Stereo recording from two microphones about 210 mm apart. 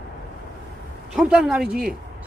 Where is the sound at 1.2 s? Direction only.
5° right (ahead or behind).